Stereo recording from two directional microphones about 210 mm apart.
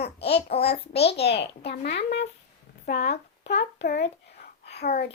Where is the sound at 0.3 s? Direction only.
30° left (ahead or behind).